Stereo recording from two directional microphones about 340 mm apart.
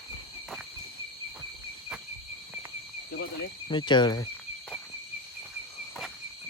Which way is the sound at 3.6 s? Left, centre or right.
Centre.